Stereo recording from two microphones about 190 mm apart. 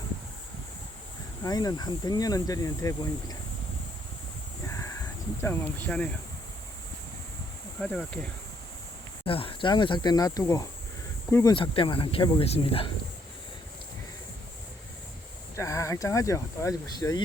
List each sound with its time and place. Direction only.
1.4 s speech: 20° left (ahead or behind)
4.6 s a sound: 15° left (ahead or behind)
7.8 s speech: centre (ahead or behind)
9.2 s speech: 30° left (ahead or behind)
11.5 s speech: 25° left (ahead or behind)
15.5 s speech: 15° left (ahead or behind)